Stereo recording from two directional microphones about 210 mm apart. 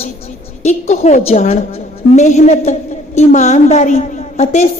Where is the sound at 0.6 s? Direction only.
35° left (ahead or behind).